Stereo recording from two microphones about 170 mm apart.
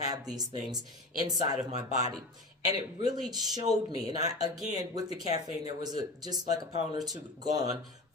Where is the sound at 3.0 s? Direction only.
25° right (ahead or behind).